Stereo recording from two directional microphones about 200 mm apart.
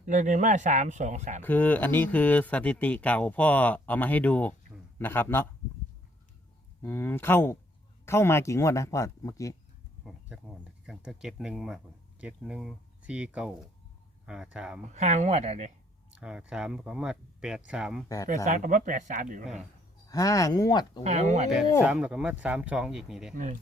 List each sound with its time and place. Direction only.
0.0 s speech: 40° right (ahead or behind)
1.4 s speech: 10° left (ahead or behind)
6.8 s speech: 10° left (ahead or behind)
10.0 s speech: centre (ahead or behind)
14.9 s speech: 35° right (ahead or behind)
16.1 s speech: 5° right (ahead or behind)
18.4 s speech: 40° right (ahead or behind)
20.1 s speech: 15° left (ahead or behind)
21.0 s speech: 35° right (ahead or behind)
21.8 s speech: 5° right (ahead or behind)